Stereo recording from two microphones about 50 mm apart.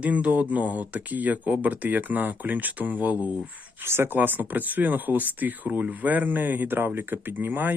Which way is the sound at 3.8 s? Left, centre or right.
Right.